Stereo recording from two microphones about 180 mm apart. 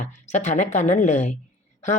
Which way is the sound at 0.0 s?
40° left (ahead or behind).